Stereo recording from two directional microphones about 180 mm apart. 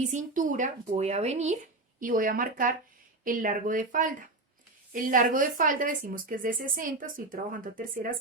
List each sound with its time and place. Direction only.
0.1 s speech: 45° right (ahead or behind)
2.0 s speech: 50° right (ahead or behind)